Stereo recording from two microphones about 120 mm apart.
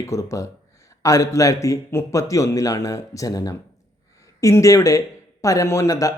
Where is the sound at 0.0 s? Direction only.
25° left (ahead or behind).